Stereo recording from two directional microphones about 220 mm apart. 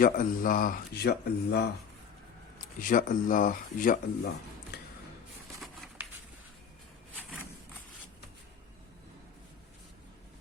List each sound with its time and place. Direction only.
0.0 s speech: 40° left (ahead or behind)
2.7 s speech: 40° left (ahead or behind)
5.6 s a sound: centre (ahead or behind)